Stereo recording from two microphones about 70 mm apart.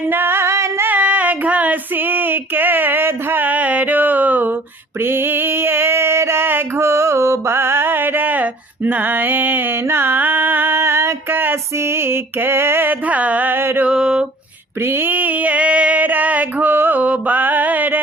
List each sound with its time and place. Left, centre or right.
0.1 s singing: right
0.9 s female singing: centre
5.0 s a sound: right
11.9 s music: right
13.8 s mantra: centre
14.8 s a sound: right